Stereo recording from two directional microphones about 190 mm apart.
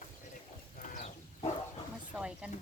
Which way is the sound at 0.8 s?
45° left (ahead or behind).